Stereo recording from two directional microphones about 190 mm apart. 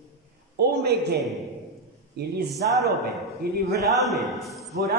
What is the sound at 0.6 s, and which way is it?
Speech, 60° right (ahead or behind).